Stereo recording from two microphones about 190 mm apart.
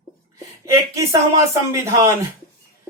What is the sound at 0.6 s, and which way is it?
Speech, 15° right (ahead or behind).